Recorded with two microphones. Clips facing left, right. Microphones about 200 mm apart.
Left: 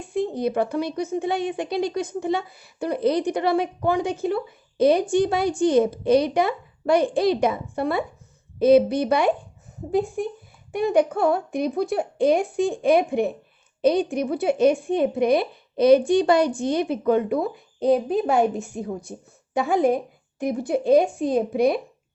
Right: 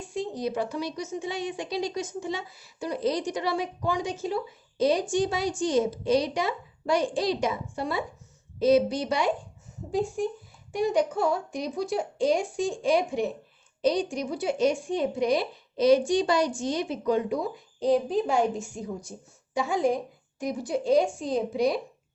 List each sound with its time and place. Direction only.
0.1 s speech: 55° left (ahead or behind)